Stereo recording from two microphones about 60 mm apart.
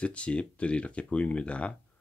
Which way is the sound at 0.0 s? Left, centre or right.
Centre.